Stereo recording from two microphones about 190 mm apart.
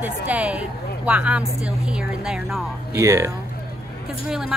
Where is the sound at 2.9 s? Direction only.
15° right (ahead or behind).